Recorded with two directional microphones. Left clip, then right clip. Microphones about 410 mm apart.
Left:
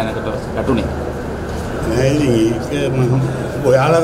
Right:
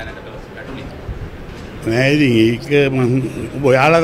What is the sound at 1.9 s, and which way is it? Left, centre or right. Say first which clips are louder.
A man's voice: right 2 dB; right.